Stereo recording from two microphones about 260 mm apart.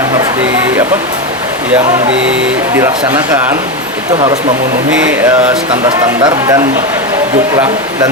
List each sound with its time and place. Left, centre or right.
6.0 s speech: centre